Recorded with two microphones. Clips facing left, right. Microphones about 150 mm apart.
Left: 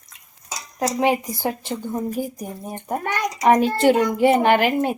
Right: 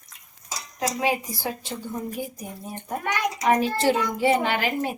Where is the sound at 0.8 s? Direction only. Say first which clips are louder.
Left 5 dB; 50° left (ahead or behind).